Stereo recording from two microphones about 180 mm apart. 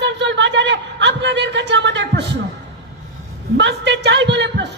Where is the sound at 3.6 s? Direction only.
75° right (ahead or behind).